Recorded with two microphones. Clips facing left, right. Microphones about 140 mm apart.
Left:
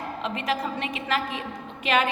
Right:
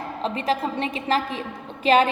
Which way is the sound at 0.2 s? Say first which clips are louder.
Right 4 dB; 30° right (ahead or behind).